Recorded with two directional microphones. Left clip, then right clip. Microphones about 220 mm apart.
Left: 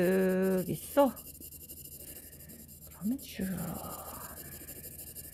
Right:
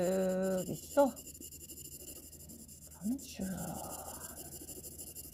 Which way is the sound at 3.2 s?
20° left (ahead or behind).